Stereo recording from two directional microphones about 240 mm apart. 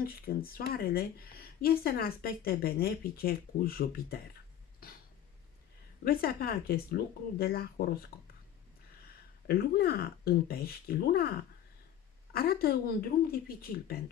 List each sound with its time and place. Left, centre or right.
0.0 s speech: left
4.8 s a sound: left
6.0 s speech: left
9.0 s speech: left